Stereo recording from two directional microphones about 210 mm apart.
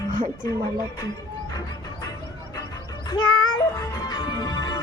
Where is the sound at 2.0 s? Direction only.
15° left (ahead or behind).